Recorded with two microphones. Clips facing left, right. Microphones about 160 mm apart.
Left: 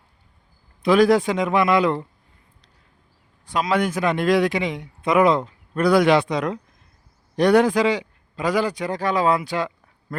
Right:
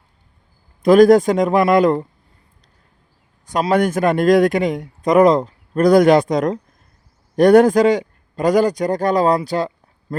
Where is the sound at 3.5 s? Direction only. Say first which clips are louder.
Right 5 dB; 45° right (ahead or behind).